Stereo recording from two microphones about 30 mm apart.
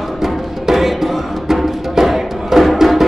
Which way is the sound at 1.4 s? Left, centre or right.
Centre.